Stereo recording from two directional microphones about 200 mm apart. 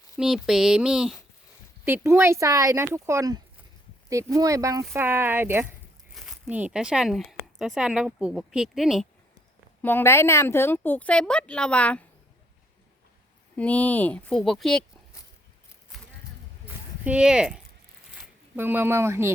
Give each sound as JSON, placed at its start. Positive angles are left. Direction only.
{"t": 0.2, "sound": "speech", "side_deg": -5}
{"t": 6.1, "sound": "speech", "side_deg": 0}
{"t": 9.8, "sound": "a woman's voice", "side_deg": 10}
{"t": 13.6, "sound": "speech", "side_deg": 5}
{"t": 16.6, "sound": "a sound", "side_deg": -5}
{"t": 18.1, "sound": "speech", "side_deg": -5}